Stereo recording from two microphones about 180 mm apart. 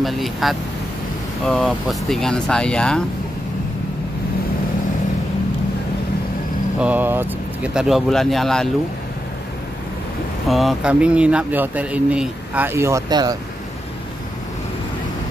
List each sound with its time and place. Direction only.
0.0 s speech: centre (ahead or behind)
6.8 s speech: 10° right (ahead or behind)
10.5 s speech: centre (ahead or behind); by 13.4 s 20° right (ahead or behind)